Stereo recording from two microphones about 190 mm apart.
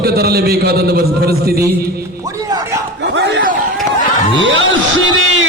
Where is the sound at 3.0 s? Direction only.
70° right (ahead or behind).